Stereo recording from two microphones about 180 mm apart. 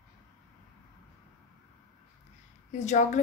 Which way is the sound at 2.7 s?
40° left (ahead or behind).